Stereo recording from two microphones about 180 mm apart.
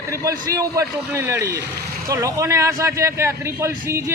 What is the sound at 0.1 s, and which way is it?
A man's voice, 15° right (ahead or behind).